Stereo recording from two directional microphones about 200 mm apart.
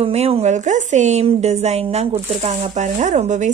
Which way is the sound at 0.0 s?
30° right (ahead or behind).